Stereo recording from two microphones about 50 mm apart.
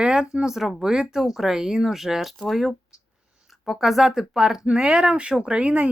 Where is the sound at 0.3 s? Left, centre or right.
Centre.